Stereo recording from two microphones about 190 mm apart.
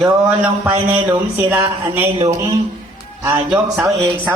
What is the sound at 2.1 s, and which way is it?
Speech, 30° right (ahead or behind).